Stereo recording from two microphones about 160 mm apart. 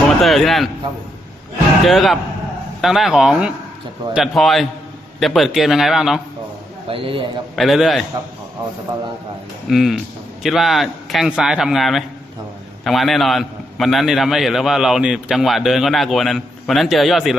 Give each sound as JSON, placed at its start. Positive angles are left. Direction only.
{"t": 0.2, "sound": "a man's voice", "side_deg": 0}
{"t": 1.8, "sound": "a man's voice", "side_deg": 0}
{"t": 6.8, "sound": "a man's voice", "side_deg": -35}
{"t": 7.5, "sound": "a man's voice", "side_deg": 0}
{"t": 9.6, "sound": "a man's voice", "side_deg": 0}